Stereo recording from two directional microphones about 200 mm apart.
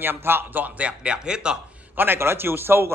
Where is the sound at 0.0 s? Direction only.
10° right (ahead or behind).